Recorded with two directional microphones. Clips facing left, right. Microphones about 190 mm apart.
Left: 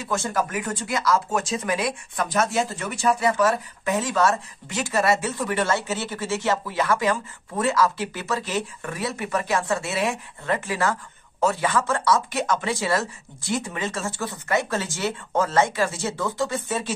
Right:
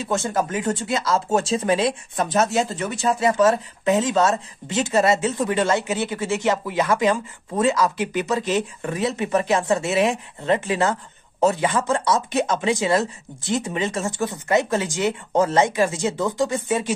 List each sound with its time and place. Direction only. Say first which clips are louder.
0.0 s speech: right 3 dB; 20° right (ahead or behind)